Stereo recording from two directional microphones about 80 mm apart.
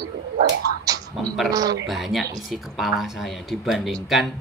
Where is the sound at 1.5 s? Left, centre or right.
Right.